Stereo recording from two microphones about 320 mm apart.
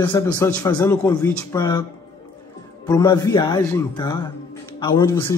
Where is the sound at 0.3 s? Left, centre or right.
Centre.